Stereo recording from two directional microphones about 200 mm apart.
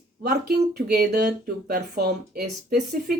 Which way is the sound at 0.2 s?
50° right (ahead or behind).